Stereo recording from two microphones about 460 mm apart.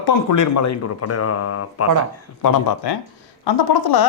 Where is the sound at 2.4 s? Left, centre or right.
Left.